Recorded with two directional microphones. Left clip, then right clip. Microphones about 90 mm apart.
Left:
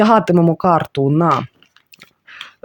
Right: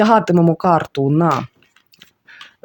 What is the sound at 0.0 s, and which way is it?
Speech, 20° left (ahead or behind).